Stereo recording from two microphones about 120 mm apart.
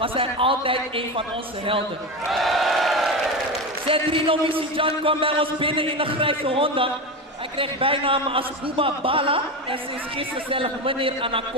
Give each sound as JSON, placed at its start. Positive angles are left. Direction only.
{"t": 0.0, "sound": "a man's voice", "side_deg": -50}
{"t": 2.2, "sound": "a sound", "side_deg": 0}
{"t": 3.8, "sound": "a man's voice", "side_deg": -50}